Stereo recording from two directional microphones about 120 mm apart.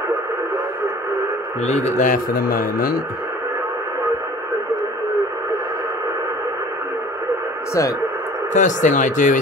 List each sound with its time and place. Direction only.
1.7 s a man's voice: 70° left (ahead or behind)
8.5 s speech: 90° left